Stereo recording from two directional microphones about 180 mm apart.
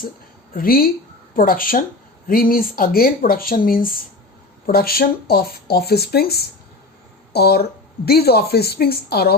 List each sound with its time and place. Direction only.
0.5 s speech: 55° left (ahead or behind)